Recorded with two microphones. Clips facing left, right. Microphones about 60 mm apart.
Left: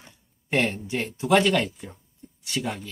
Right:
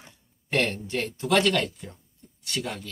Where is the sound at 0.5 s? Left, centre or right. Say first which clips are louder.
Left 1 dB; centre.